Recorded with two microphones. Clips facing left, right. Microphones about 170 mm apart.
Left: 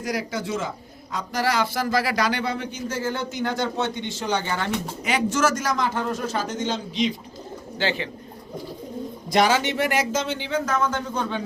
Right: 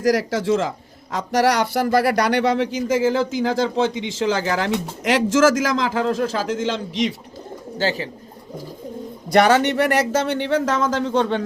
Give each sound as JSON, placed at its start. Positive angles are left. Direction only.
{"t": 0.0, "sound": "speech", "side_deg": -90}
{"t": 1.1, "sound": "speech", "side_deg": -75}
{"t": 7.8, "sound": "speech", "side_deg": -40}
{"t": 9.3, "sound": "speech", "side_deg": -60}